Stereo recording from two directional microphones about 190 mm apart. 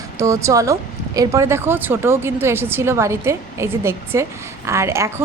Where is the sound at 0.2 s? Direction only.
15° right (ahead or behind).